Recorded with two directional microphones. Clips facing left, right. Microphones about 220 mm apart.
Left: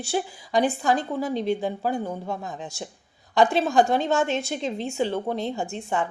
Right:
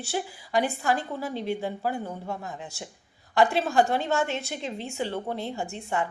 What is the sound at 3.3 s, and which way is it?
A woman's voice, 15° left (ahead or behind).